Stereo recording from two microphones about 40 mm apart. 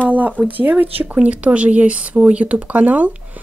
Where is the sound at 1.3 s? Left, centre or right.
Right.